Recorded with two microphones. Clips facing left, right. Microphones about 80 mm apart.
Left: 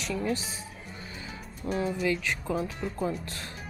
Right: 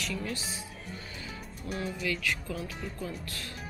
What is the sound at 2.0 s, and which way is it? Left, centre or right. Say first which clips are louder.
Speech: left 4 dB; left.